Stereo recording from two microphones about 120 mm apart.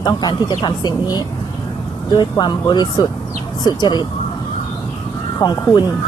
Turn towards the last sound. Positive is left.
turn(degrees=35)  # may be behind; listen again after turning